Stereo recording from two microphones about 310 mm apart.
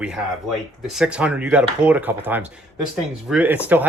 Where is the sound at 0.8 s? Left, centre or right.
Centre.